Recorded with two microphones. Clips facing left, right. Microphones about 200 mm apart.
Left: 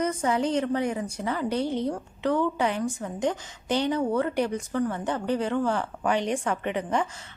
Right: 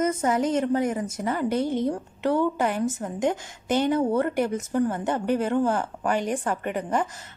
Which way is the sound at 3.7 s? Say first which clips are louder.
Right 3 dB; 50° right (ahead or behind).